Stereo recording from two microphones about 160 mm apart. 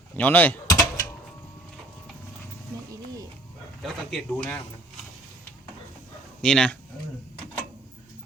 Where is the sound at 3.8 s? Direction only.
5° left (ahead or behind).